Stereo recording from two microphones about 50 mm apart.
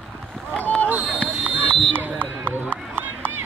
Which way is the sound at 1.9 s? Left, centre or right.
Right.